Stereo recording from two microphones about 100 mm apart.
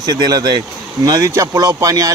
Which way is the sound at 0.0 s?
40° right (ahead or behind).